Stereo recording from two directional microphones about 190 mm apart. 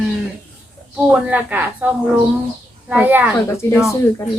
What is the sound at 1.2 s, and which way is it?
Speech, 10° right (ahead or behind).